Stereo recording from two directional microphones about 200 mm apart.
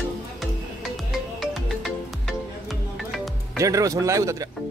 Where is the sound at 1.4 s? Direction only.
Centre (ahead or behind).